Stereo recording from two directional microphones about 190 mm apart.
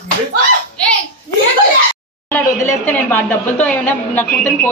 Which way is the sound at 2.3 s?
10° left (ahead or behind).